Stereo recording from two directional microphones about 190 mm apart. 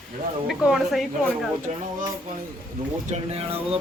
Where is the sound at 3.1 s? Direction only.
35° right (ahead or behind).